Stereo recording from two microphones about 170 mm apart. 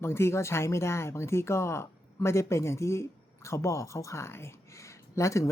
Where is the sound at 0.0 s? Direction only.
15° left (ahead or behind).